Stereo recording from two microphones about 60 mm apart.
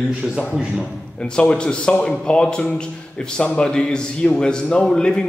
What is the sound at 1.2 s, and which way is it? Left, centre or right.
A man's voice, centre.